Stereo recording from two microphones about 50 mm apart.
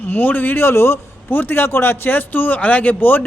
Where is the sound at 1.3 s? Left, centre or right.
Left.